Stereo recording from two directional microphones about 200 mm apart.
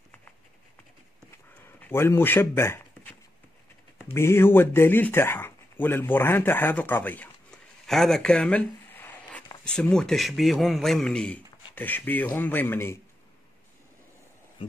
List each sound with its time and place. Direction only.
1.8 s speech: 10° left (ahead or behind)
14.6 s speech: 25° left (ahead or behind)